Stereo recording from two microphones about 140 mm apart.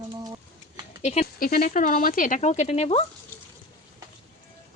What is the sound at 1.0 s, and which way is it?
Speech, 50° left (ahead or behind).